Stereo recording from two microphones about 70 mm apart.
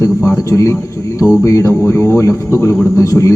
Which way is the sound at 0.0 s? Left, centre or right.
Left.